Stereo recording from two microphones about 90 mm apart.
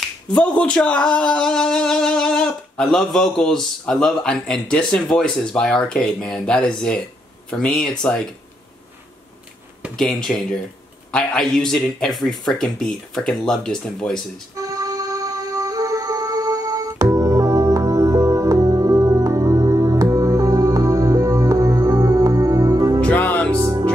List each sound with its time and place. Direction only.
0.3 s speech: 10° left (ahead or behind)
9.9 s a man's voice: 5° left (ahead or behind)
14.5 s music: 40° right (ahead or behind)
22.9 s music: 15° left (ahead or behind)
23.5 s music: 40° right (ahead or behind)